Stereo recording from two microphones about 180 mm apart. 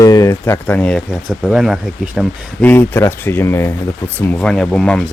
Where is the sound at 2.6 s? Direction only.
10° left (ahead or behind).